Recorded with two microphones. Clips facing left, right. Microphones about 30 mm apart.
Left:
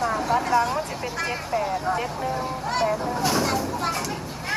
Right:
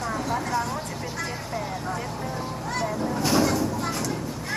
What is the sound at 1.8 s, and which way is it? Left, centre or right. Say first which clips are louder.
Speech: left 5 dB; left.